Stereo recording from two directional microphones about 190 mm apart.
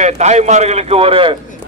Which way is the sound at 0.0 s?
35° right (ahead or behind).